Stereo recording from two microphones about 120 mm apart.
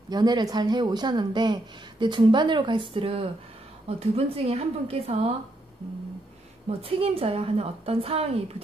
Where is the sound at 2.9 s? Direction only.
50° right (ahead or behind).